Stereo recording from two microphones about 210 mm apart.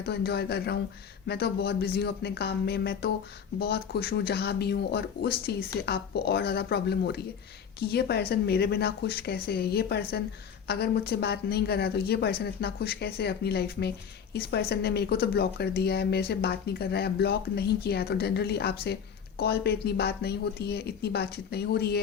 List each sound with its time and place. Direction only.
0.0 s speech: 50° left (ahead or behind)